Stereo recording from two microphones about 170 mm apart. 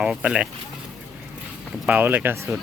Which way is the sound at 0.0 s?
5° right (ahead or behind).